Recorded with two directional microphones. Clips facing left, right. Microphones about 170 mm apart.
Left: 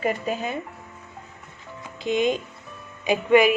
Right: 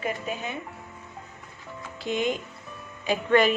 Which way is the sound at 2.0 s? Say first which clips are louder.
Left 5 dB; 20° left (ahead or behind).